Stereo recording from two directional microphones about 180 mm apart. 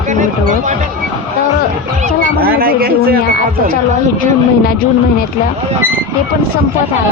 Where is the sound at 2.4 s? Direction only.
55° right (ahead or behind).